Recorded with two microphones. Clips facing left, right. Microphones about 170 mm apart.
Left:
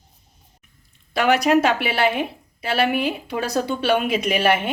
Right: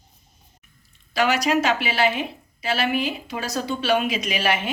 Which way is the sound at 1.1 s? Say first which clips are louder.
Left 4 dB; 55° left (ahead or behind).